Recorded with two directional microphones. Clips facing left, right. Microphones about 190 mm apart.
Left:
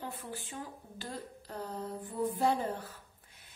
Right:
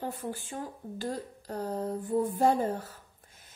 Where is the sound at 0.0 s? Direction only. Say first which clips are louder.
Right 6 dB; 45° right (ahead or behind).